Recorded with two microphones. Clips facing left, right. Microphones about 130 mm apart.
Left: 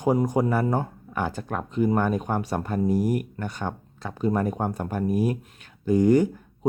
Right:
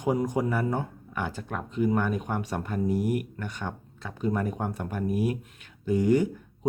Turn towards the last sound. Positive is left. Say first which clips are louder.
# left 4 dB
turn(degrees=45)  # may be behind; listen again after turning